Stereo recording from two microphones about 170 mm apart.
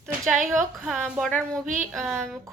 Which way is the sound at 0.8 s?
5° right (ahead or behind).